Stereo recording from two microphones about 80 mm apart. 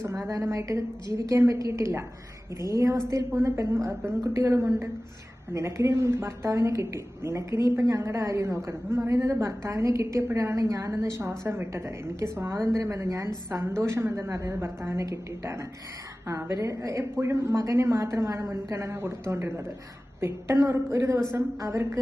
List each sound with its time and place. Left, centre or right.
0.5 s a woman's voice: right
3.8 s a woman's voice: right
6.0 s a woman's voice: right
11.2 s a woman's voice: right